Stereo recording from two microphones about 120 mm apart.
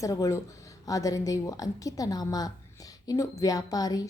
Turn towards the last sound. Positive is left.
turn(degrees=30)  # may be behind; listen again after turning